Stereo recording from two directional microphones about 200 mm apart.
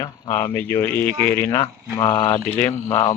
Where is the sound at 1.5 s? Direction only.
20° left (ahead or behind).